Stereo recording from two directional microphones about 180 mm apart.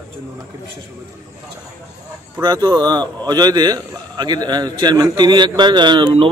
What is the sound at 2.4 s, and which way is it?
A man's voice, 20° right (ahead or behind).